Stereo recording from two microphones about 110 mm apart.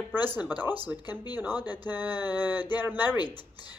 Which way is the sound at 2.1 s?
40° left (ahead or behind).